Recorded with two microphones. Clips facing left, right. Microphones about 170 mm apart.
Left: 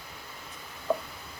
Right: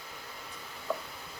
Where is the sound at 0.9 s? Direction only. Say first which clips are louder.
Left 6 dB; 30° left (ahead or behind).